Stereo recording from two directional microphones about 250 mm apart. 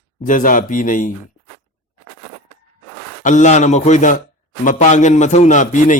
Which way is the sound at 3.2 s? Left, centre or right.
Left.